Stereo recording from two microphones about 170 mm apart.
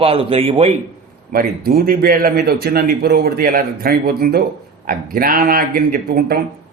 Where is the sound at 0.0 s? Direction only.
35° right (ahead or behind).